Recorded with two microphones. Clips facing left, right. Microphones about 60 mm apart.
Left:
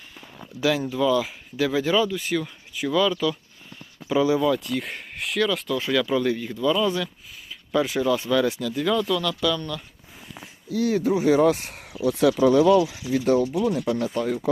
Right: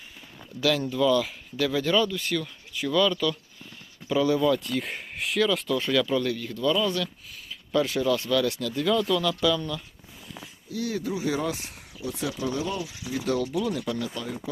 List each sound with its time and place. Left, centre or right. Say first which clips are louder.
0.3 s speech: left 2 dB; centre
8.6 s speech: left 1 dB; centre
10.8 s speech: left 8 dB; left
11.3 s speech: left 10 dB; left
11.9 s speech: left 12 dB; left
12.5 s speech: left 15 dB; left
13.1 s speech: left 7 dB; left
13.4 s speech: left 4 dB; left
14.0 s speech: left 8 dB; left